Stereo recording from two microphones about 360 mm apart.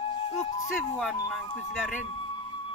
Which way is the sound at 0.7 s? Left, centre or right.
Centre.